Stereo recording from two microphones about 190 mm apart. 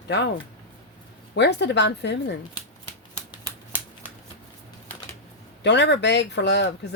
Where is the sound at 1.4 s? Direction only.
65° left (ahead or behind).